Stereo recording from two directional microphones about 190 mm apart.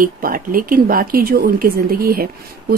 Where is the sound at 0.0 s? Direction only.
50° right (ahead or behind).